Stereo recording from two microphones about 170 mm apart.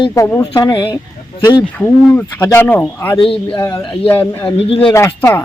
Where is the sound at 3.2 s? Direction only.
30° left (ahead or behind).